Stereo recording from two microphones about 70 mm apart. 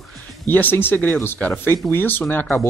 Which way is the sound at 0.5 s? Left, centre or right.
Left.